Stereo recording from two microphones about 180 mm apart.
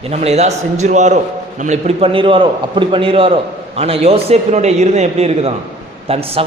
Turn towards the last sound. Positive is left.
turn(degrees=-35)  # may be behind; listen again after turning